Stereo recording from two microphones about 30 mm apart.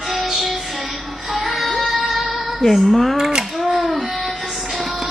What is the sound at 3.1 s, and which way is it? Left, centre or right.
Speech, right.